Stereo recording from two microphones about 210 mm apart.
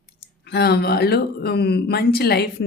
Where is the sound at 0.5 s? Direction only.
50° left (ahead or behind).